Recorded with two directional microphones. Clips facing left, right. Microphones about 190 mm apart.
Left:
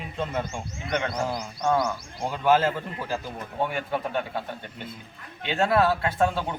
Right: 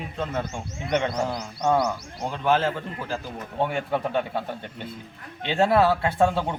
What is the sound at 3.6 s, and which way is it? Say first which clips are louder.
Speech: right 3 dB; 25° right (ahead or behind).